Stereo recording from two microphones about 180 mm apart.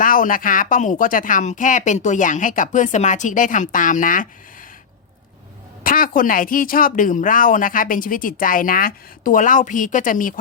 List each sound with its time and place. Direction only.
0.0 s speech: 50° left (ahead or behind)
5.8 s speech: 50° left (ahead or behind)